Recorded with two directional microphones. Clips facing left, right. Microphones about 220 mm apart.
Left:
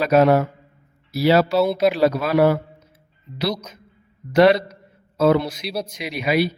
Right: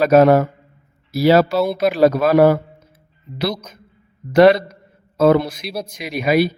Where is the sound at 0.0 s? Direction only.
45° right (ahead or behind).